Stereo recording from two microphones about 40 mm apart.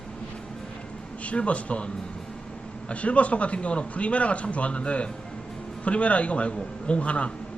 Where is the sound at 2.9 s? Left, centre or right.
Left.